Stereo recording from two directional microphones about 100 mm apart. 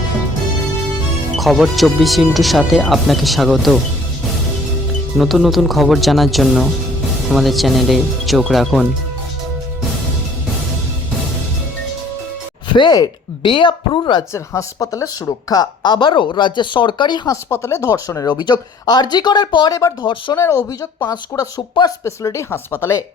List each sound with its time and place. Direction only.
1.4 s speech: centre (ahead or behind)
5.1 s speech: centre (ahead or behind)
12.6 s a woman's voice: 50° left (ahead or behind)
14.0 s a woman's voice: 40° left (ahead or behind)
14.3 s a woman's voice: 30° left (ahead or behind); by 17.2 s 50° left (ahead or behind)
17.2 s speech: 25° left (ahead or behind)
18.3 s a woman's voice: 45° left (ahead or behind)
19.7 s speech: 35° left (ahead or behind)